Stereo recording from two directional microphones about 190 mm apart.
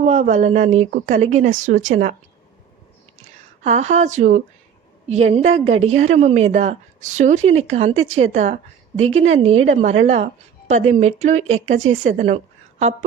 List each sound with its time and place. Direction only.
0.0 s speech: 40° right (ahead or behind)
3.2 s speech: 35° right (ahead or behind)